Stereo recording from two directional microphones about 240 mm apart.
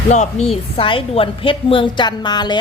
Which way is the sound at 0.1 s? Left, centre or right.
Left.